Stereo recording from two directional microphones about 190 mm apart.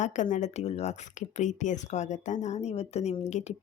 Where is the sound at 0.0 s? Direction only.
40° left (ahead or behind).